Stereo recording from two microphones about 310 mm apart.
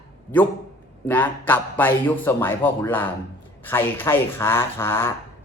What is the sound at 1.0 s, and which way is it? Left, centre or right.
A man's voice, centre.